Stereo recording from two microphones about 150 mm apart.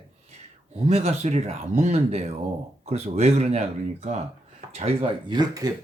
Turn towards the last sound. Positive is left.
turn(degrees=-25)  # may be behind; listen again after turning